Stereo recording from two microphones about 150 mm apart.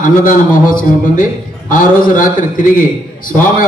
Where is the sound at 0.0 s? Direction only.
65° left (ahead or behind).